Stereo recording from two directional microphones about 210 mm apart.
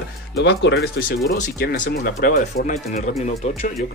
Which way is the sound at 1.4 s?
45° left (ahead or behind).